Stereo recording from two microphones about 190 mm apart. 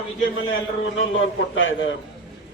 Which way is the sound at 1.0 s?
90° left.